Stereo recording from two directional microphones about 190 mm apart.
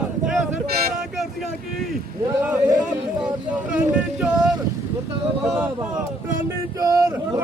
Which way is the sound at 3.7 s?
5° right (ahead or behind).